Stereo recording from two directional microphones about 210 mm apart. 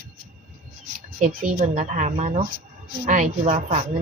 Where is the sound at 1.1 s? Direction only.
35° right (ahead or behind).